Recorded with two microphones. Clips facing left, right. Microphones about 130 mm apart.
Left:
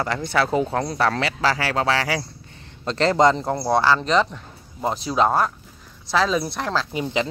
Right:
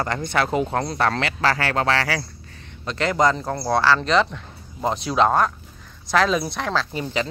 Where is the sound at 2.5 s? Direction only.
30° left (ahead or behind).